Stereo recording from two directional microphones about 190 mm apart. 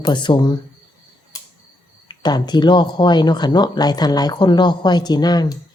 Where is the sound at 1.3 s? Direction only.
20° left (ahead or behind).